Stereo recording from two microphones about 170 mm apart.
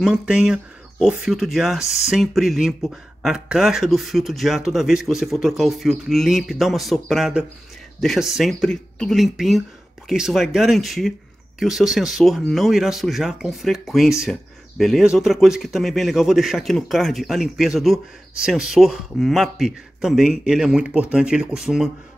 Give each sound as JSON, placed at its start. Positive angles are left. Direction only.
{"t": 0.0, "sound": "speech", "side_deg": -5}